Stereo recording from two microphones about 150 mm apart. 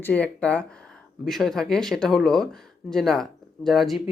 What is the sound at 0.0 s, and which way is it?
Speech, 10° left (ahead or behind).